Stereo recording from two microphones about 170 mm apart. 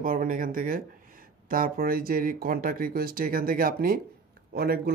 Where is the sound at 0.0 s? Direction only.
55° right (ahead or behind).